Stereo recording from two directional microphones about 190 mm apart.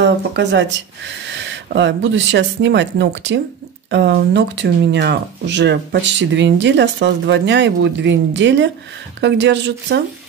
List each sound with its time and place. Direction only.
0.0 s speech: 65° right (ahead or behind)